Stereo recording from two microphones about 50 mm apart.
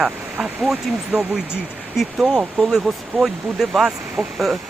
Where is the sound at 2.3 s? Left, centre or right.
Centre.